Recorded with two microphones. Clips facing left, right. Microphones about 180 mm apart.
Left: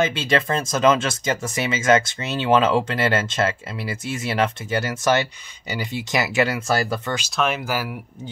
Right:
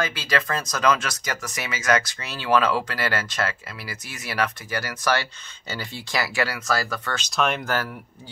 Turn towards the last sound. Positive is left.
turn(degrees=10)  # may be behind; listen again after turning